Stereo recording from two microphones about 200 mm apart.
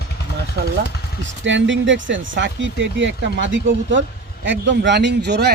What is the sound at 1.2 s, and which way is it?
Speech, 65° right (ahead or behind).